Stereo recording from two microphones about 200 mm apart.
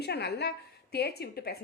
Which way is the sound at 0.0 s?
55° left (ahead or behind).